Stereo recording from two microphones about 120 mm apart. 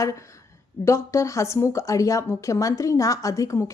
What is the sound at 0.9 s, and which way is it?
A woman's voice, 25° left (ahead or behind).